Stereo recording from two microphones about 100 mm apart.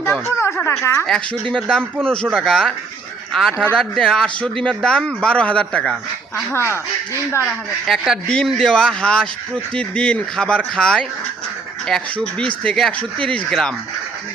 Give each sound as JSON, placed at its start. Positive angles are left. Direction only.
{"t": 0.0, "sound": "speech", "side_deg": 25}
{"t": 1.0, "sound": "a man's voice", "side_deg": 5}
{"t": 6.5, "sound": "speech", "side_deg": 25}
{"t": 7.4, "sound": "a man's voice", "side_deg": 0}